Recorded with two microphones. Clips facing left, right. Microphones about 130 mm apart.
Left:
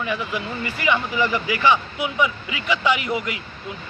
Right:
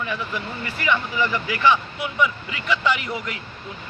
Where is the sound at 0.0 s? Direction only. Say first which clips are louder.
Left 2 dB; 10° left (ahead or behind).